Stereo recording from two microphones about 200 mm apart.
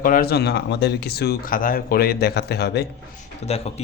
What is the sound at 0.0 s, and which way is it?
Speech, 45° left (ahead or behind).